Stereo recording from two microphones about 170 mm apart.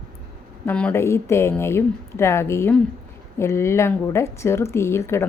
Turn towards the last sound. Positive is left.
turn(degrees=15)  # may be behind; listen again after turning